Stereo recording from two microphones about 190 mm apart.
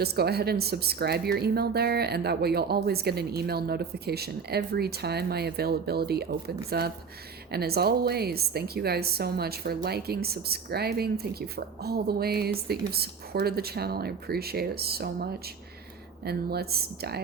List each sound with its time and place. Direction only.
0.0 s a woman's voice: 55° right (ahead or behind)